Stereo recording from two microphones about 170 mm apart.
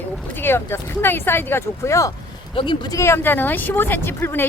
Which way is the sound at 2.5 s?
30° left (ahead or behind).